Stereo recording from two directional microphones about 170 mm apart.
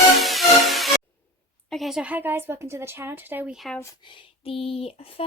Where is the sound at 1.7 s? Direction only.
Centre (ahead or behind).